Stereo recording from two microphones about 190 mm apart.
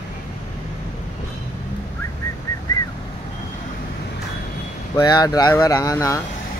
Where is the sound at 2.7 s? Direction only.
20° left (ahead or behind).